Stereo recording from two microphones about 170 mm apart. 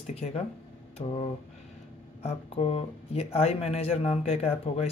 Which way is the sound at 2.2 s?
35° left (ahead or behind).